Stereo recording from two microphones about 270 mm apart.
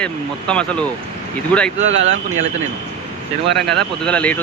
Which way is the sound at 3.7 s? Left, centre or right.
Centre.